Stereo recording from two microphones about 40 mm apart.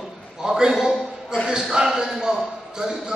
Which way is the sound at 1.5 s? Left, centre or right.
Centre.